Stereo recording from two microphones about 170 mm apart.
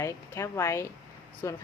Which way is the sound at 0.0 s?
15° left (ahead or behind).